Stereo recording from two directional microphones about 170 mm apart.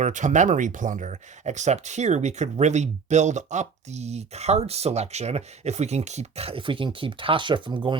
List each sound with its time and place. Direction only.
0.0 s speech: 45° right (ahead or behind); by 7.9 s 30° right (ahead or behind)